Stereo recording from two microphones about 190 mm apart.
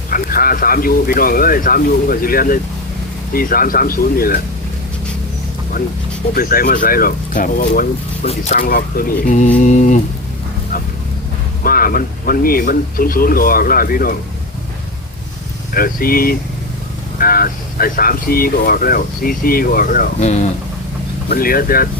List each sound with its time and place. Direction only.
0.1 s speech: 50° left (ahead or behind)
6.3 s speech: 50° left (ahead or behind)
9.6 s mantra: 40° left (ahead or behind)
11.6 s speech: 50° left (ahead or behind)
15.7 s speech: 50° left (ahead or behind)
21.2 s speech: 50° left (ahead or behind)